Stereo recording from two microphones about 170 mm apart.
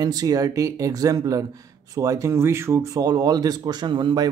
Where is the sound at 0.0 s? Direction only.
25° right (ahead or behind).